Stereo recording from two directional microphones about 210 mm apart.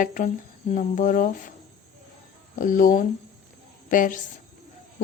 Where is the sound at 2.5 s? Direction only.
40° left (ahead or behind).